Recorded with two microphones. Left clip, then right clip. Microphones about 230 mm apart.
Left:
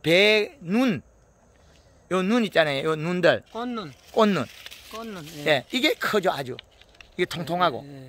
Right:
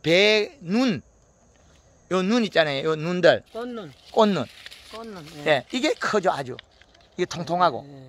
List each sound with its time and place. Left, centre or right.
0.0 s a man's voice: centre
2.0 s a man's voice: centre
3.5 s speech: left
4.1 s speech: centre
4.9 s speech: left
5.4 s a man's voice: centre